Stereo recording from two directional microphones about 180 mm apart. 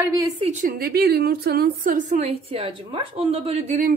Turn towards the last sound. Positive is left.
turn(degrees=-40)  # may be behind; listen again after turning